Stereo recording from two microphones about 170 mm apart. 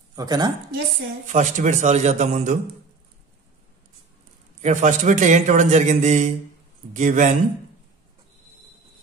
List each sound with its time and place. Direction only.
0.1 s a woman's voice: 25° right (ahead or behind)
1.2 s a man's voice: 45° right (ahead or behind)
4.6 s a man's voice: 45° right (ahead or behind)